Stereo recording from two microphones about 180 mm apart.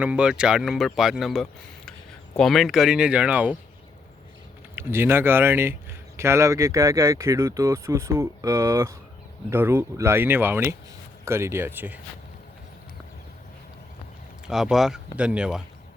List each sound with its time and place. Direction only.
0.0 s speech: 5° right (ahead or behind)
4.7 s speech: 15° right (ahead or behind)
14.4 s speech: centre (ahead or behind)